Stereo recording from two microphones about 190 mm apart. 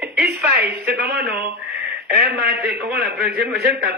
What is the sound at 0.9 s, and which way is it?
Speech, 55° right (ahead or behind).